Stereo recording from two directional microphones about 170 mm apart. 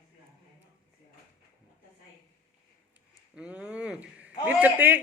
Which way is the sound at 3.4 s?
5° right (ahead or behind).